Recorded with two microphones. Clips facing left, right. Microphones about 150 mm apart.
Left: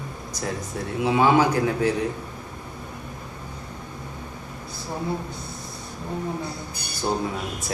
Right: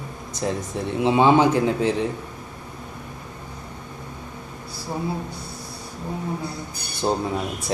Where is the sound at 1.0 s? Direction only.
25° right (ahead or behind).